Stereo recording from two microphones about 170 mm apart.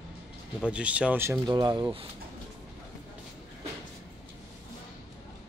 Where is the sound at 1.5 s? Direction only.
25° right (ahead or behind).